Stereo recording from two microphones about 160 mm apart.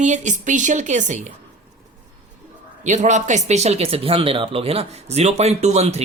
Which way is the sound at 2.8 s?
50° right (ahead or behind).